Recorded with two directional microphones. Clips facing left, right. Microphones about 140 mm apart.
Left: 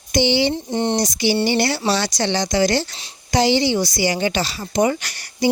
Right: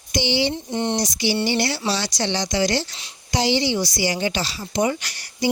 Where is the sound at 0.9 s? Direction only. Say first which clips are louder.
Left 3 dB; 50° left (ahead or behind).